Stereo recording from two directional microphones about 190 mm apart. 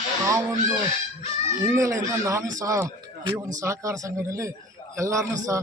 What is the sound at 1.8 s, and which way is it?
Speech, 15° right (ahead or behind).